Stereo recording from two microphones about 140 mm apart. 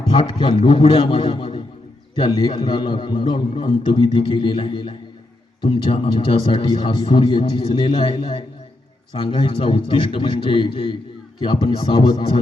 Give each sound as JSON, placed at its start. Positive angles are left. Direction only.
{"t": 0.1, "sound": "a man's voice", "side_deg": 35}